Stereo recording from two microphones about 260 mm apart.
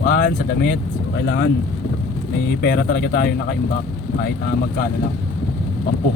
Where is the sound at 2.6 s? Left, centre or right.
Left.